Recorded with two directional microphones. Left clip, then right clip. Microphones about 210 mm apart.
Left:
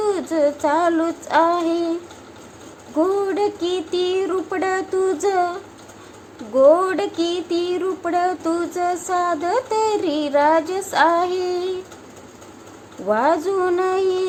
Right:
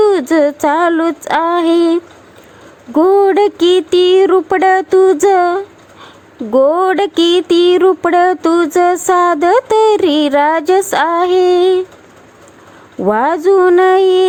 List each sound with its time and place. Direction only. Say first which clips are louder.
0.0 s speech: right 9 dB; 40° right (ahead or behind)
13.1 s speech: right 7 dB; 40° right (ahead or behind)